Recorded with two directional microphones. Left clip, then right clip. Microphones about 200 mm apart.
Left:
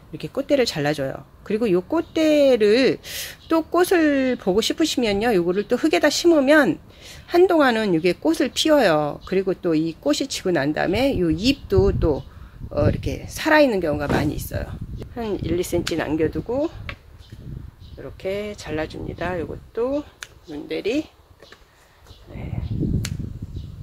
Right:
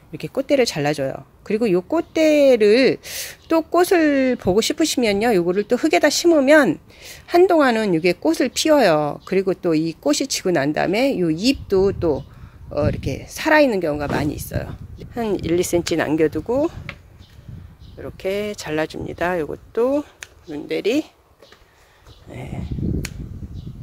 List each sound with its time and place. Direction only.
0.2 s speech: 30° right (ahead or behind); by 16.7 s 55° right (ahead or behind)
17.9 s speech: 50° right (ahead or behind)
22.3 s speech: 55° right (ahead or behind)